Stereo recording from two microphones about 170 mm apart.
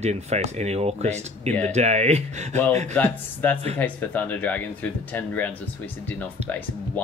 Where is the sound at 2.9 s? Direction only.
10° left (ahead or behind).